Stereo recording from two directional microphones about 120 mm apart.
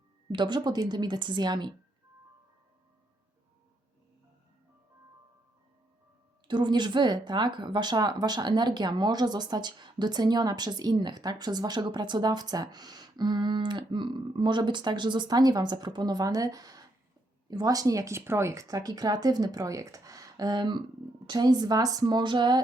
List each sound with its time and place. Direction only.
0.3 s speech: 40° right (ahead or behind)
6.5 s speech: 40° right (ahead or behind)